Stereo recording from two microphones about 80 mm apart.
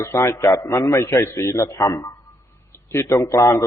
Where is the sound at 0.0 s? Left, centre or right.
Left.